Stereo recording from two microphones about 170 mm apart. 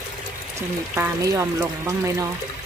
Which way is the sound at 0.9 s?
10° right (ahead or behind).